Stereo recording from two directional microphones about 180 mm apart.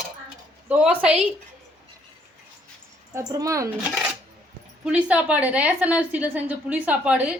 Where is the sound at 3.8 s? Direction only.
5° right (ahead or behind).